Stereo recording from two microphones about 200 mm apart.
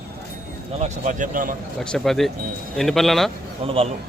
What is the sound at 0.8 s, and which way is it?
Speech, 40° right (ahead or behind).